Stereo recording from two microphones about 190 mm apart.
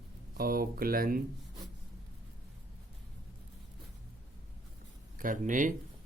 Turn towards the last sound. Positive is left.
turn(degrees=-45)  # may be behind; listen again after turning